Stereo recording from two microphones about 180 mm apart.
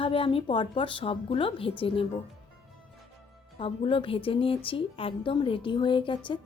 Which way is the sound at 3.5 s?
30° left (ahead or behind).